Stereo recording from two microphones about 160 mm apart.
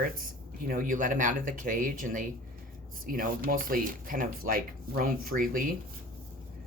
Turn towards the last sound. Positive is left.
turn(degrees=-60)  # may be behind; listen again after turning